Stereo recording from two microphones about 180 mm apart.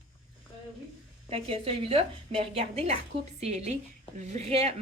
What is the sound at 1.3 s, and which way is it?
Speech, 30° right (ahead or behind).